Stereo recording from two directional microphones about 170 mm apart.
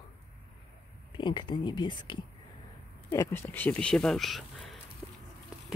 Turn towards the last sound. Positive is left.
turn(degrees=-5)  # may be behind; listen again after turning